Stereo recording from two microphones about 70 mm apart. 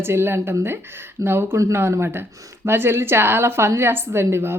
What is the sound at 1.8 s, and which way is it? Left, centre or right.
Speech, right.